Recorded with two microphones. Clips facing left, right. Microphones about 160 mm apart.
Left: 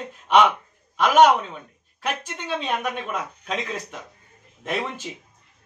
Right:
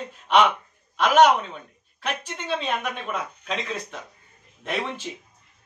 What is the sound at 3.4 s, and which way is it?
Speech, 10° left (ahead or behind).